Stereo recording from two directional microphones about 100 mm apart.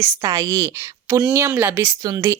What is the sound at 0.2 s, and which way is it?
Speech, 35° right (ahead or behind).